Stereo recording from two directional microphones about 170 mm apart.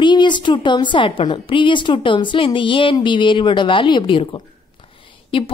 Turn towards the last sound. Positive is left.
turn(degrees=30)  # may be behind; listen again after turning